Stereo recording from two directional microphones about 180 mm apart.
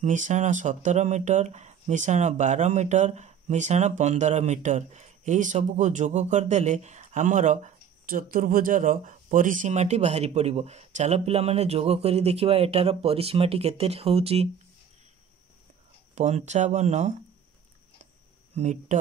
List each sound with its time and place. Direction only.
0.0 s speech: 45° right (ahead or behind)
16.2 s speech: 40° right (ahead or behind)
18.6 s speech: 40° right (ahead or behind)